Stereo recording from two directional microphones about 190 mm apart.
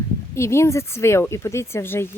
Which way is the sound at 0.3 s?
15° left (ahead or behind).